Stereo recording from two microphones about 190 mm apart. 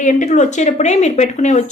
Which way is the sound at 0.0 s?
40° left (ahead or behind).